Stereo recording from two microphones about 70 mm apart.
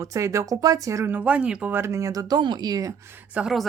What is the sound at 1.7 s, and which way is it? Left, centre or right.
Speech, right.